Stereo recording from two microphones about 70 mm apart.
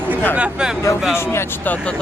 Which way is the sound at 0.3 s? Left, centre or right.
Centre.